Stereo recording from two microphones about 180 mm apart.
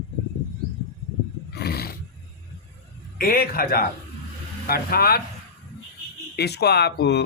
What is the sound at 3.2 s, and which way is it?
A man's voice, 55° left (ahead or behind).